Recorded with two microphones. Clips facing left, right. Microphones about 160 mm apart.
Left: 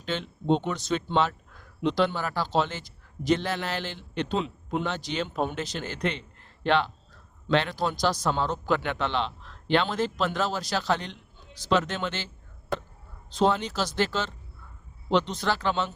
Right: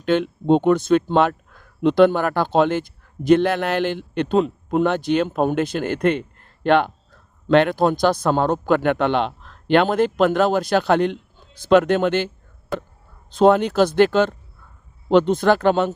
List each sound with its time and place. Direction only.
0.0 s a man's voice: 55° right (ahead or behind)
13.3 s a man's voice: 55° right (ahead or behind)